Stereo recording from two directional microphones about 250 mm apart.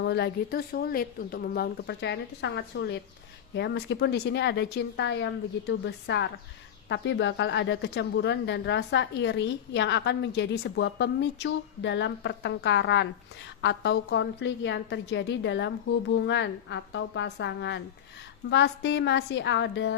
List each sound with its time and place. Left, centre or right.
0.0 s a woman's voice: left